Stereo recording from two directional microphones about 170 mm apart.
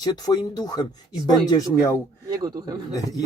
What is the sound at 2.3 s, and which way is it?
Speech, 20° right (ahead or behind).